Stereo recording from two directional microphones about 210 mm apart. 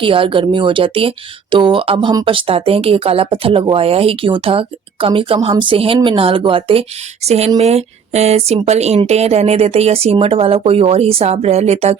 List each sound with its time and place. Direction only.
0.0 s speech: 25° right (ahead or behind)